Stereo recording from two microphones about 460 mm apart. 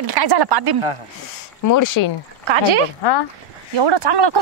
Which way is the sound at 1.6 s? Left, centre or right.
Left.